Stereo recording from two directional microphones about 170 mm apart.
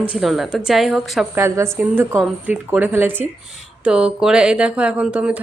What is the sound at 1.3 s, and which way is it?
Speech, 15° right (ahead or behind).